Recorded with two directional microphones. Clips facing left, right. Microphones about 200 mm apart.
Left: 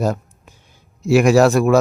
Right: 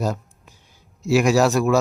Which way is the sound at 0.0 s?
55° left (ahead or behind).